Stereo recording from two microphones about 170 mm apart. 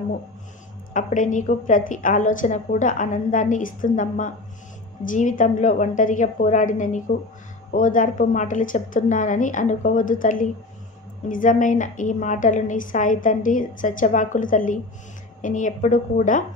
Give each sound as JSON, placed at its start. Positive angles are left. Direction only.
{"t": 0.9, "sound": "a woman's voice", "side_deg": 50}